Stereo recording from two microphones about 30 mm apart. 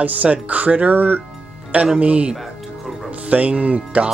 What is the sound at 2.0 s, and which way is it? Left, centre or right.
Speech, right.